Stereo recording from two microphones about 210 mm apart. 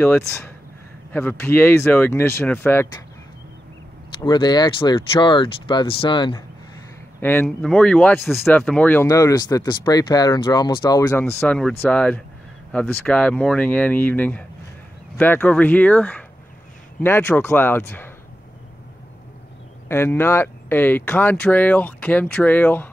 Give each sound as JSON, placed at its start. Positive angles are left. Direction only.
{"t": 0.0, "sound": "speech", "side_deg": 10}
{"t": 4.2, "sound": "speech", "side_deg": 20}
{"t": 7.2, "sound": "speech", "side_deg": 10}
{"t": 11.3, "sound": "speech", "side_deg": 5}
{"t": 19.9, "sound": "speech", "side_deg": 10}